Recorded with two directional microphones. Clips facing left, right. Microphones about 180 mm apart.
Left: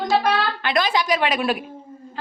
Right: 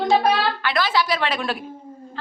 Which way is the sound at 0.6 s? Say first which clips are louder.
Left 3 dB; 20° left (ahead or behind).